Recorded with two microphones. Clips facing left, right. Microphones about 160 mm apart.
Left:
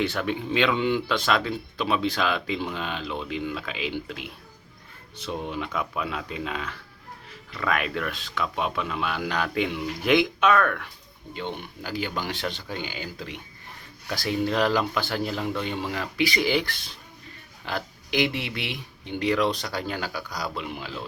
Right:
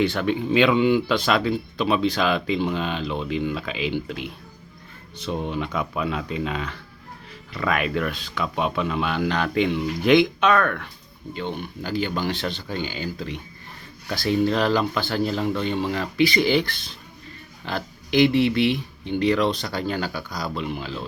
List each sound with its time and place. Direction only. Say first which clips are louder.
0.0 s speech: right 5 dB; centre (ahead or behind)
11.3 s speech: right 3 dB; 15° left (ahead or behind)